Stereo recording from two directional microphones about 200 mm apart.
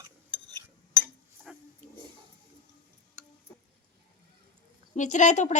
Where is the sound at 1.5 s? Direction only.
5° right (ahead or behind).